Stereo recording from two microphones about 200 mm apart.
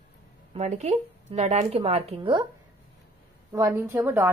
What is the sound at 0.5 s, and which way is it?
A woman's voice, 35° right (ahead or behind).